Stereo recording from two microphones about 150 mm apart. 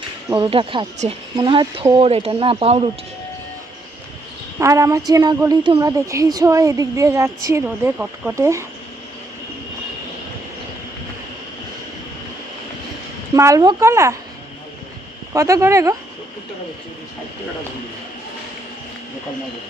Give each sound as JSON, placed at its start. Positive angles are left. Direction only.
{"t": 0.3, "sound": "a woman's voice", "side_deg": -25}
{"t": 4.6, "sound": "a woman's voice", "side_deg": -20}
{"t": 7.6, "sound": "speech", "side_deg": -10}
{"t": 13.3, "sound": "a woman's voice", "side_deg": -20}
{"t": 15.3, "sound": "a woman's voice", "side_deg": -20}